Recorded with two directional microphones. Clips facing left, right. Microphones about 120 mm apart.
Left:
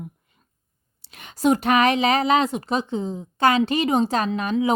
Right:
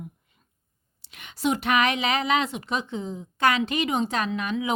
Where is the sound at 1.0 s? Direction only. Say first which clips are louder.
Left 6 dB; 40° left (ahead or behind).